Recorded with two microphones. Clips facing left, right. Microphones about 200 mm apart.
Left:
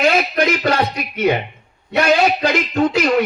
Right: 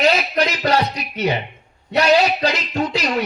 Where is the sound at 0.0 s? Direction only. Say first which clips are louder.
Left 2 dB; 50° left (ahead or behind).